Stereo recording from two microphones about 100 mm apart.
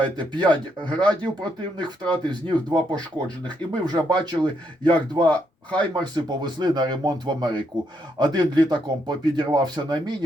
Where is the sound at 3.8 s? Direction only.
45° right (ahead or behind).